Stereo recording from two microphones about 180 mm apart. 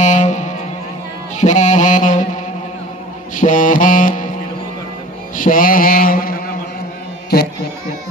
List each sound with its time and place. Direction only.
0.0 s vehicle: 40° left (ahead or behind)
1.4 s music: 40° left (ahead or behind)
3.3 s music: 45° left (ahead or behind)
5.3 s mantra: 50° left (ahead or behind)
7.3 s a sound: 60° left (ahead or behind)